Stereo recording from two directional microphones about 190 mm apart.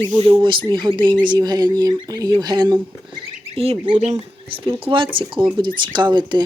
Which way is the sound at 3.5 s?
30° right (ahead or behind).